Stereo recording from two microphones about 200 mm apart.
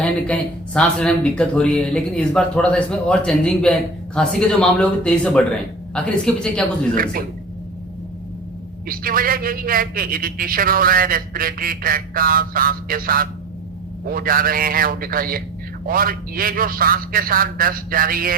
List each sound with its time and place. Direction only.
0.0 s speech: 5° left (ahead or behind)
6.9 s speech: 45° right (ahead or behind)
8.9 s speech: 45° right (ahead or behind)